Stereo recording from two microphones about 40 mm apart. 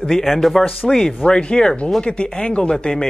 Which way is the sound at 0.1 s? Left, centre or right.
Centre.